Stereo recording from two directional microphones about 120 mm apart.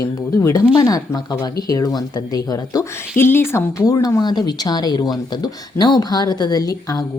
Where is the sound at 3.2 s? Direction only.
20° left (ahead or behind).